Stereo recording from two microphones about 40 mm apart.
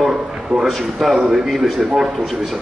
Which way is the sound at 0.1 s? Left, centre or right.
Right.